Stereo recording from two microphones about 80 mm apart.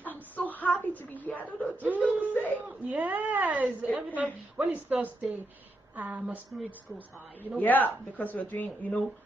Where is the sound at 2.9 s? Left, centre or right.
Centre.